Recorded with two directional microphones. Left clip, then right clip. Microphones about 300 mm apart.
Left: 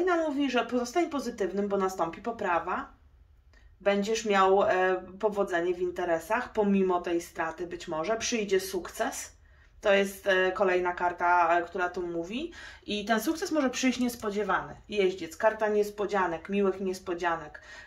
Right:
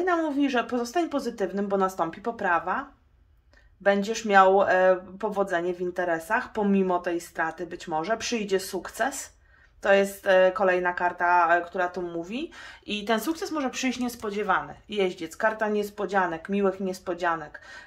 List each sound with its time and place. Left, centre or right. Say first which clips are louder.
0.0 s speech: right 2 dB; right
3.8 s speech: right 3 dB; right